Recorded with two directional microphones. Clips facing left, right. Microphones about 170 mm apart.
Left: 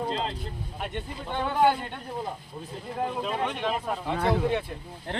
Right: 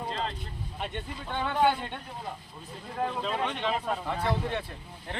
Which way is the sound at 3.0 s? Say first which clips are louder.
Left 1 dB; 10° left (ahead or behind).